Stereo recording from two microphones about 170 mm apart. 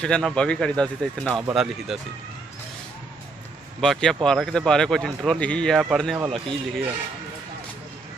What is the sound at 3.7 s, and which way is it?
A man's voice, 5° left (ahead or behind).